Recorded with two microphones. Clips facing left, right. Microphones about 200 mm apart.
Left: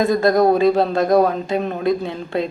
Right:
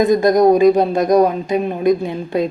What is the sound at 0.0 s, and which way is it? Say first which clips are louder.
Speech: right 3 dB; 20° right (ahead or behind).